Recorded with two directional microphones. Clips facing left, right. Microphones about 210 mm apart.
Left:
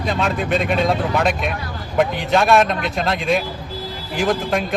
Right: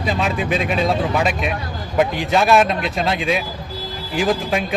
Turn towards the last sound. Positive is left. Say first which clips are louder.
# even
turn(degrees=0)  # may be behind; listen again after turning